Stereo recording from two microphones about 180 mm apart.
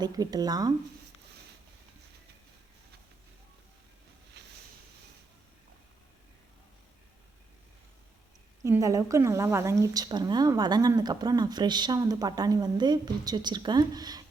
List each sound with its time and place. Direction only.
0.0 s speech: 20° right (ahead or behind)
4.4 s boat: 70° right (ahead or behind)
8.6 s speech: 15° right (ahead or behind)